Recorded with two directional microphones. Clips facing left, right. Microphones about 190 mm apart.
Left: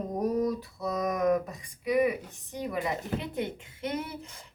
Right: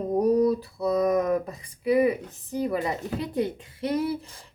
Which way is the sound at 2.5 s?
35° right (ahead or behind).